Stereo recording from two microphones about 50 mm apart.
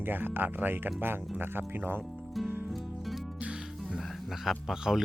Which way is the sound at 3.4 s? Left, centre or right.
Centre.